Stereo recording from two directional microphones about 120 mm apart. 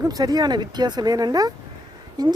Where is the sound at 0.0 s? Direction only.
30° right (ahead or behind).